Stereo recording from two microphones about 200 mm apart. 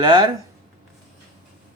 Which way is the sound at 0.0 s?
25° right (ahead or behind).